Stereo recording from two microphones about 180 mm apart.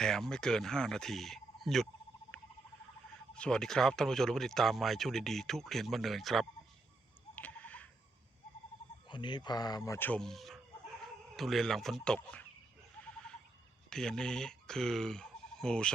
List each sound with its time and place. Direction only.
0.0 s speech: 5° left (ahead or behind)
3.3 s speech: 5° left (ahead or behind)
7.3 s owl: 10° left (ahead or behind)
9.0 s speech: 25° left (ahead or behind); by 12.4 s 5° left (ahead or behind)
13.9 s speech: 5° left (ahead or behind)